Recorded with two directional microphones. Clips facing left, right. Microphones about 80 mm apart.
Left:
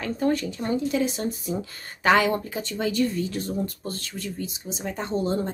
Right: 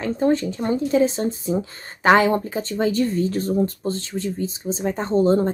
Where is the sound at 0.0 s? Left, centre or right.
Right.